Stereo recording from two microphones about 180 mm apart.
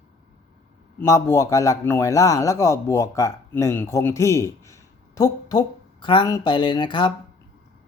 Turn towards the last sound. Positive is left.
turn(degrees=25)  # may be behind; listen again after turning